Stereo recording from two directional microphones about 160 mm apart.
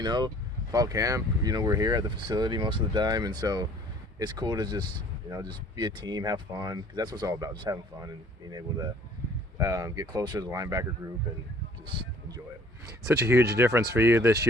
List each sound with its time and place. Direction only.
0.0 s speech: 25° right (ahead or behind)
11.9 s a sound: 30° right (ahead or behind)
13.1 s speech: 20° right (ahead or behind)